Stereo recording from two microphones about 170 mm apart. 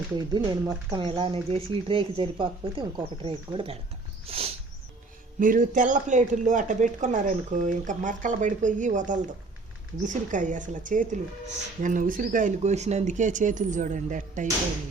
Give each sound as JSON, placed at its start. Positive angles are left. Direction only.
{"t": 0.3, "sound": "speech", "side_deg": -25}
{"t": 4.3, "sound": "a sound", "side_deg": -35}
{"t": 5.4, "sound": "speech", "side_deg": -50}